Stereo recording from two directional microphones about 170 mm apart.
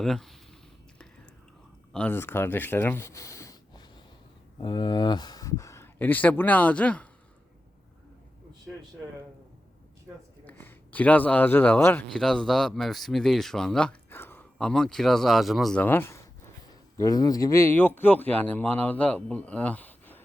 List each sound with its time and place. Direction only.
0.0 s speech: centre (ahead or behind)
1.9 s speech: 10° left (ahead or behind)
8.7 s speech: centre (ahead or behind)
10.4 s speech: 10° left (ahead or behind)